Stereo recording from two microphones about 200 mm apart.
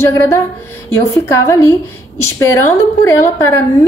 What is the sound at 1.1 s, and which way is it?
Speech, 15° left (ahead or behind).